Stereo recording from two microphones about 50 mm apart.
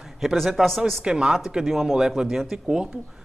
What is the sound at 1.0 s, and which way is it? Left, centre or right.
Speech, centre.